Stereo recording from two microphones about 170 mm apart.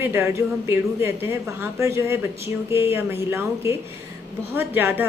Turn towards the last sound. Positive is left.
turn(degrees=-10)  # may be behind; listen again after turning